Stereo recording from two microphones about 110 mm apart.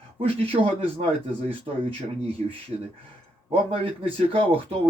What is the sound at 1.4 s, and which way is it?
Speech, 60° right (ahead or behind).